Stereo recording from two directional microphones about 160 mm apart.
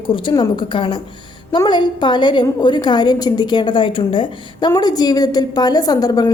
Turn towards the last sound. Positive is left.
turn(degrees=25)  # may be behind; listen again after turning